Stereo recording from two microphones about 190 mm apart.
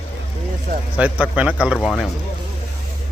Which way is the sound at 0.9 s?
10° right (ahead or behind).